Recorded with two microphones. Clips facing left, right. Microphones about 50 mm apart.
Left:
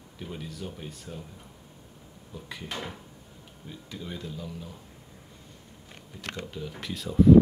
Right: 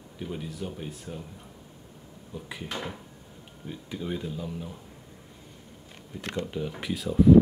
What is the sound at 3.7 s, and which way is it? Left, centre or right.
Speech, centre.